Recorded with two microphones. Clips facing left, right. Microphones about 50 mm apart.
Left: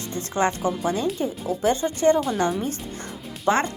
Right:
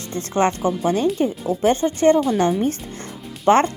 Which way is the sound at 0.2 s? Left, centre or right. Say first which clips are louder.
Right 4 dB; right.